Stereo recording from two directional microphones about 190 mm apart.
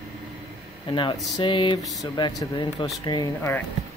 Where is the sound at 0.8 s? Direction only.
25° left (ahead or behind).